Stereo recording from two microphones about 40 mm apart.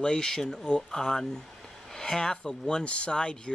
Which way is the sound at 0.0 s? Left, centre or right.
Centre.